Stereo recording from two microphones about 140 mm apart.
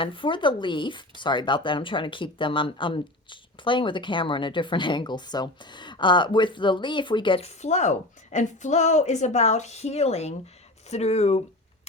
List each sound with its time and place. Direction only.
0.0 s speech: 40° left (ahead or behind)